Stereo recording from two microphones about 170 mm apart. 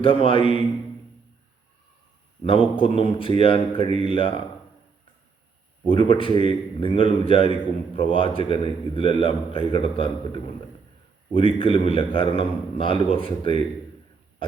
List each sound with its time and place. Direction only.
0.0 s a man's voice: 30° left (ahead or behind)
2.4 s a man's voice: 30° left (ahead or behind)
5.8 s a man's voice: 30° left (ahead or behind)